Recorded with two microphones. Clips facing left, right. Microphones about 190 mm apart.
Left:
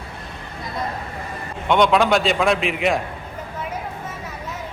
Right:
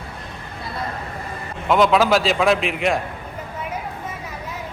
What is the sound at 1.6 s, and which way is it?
A man's voice, centre (ahead or behind).